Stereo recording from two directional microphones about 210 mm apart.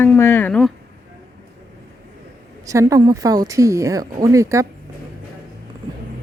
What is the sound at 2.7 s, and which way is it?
Speech, 15° right (ahead or behind).